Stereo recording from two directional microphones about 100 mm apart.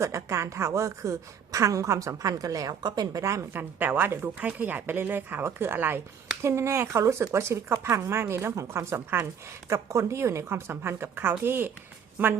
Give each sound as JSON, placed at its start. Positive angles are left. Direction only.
{"t": 0.0, "sound": "a woman's voice", "side_deg": -30}